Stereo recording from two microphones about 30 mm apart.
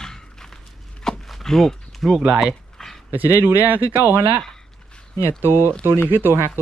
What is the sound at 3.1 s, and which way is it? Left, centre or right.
Speech, right.